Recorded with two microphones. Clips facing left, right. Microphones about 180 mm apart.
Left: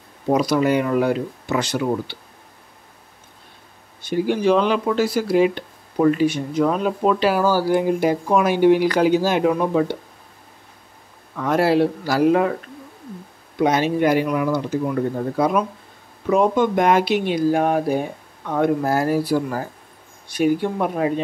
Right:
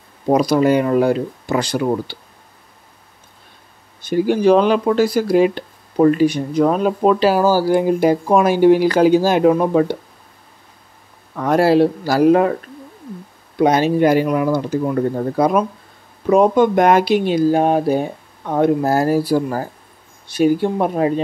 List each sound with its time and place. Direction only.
0.3 s speech: 35° right (ahead or behind)
4.3 s speech: 40° right (ahead or behind)
11.3 s speech: 40° right (ahead or behind)
13.6 s speech: 35° right (ahead or behind)